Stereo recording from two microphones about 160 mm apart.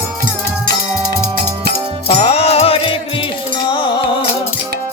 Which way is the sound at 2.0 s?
40° left (ahead or behind).